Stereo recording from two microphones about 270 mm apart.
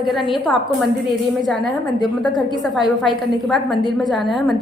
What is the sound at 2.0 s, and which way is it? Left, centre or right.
Speech, centre.